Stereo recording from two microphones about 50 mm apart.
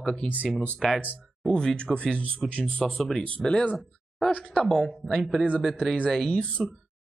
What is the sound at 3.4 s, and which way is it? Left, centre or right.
Speech, centre.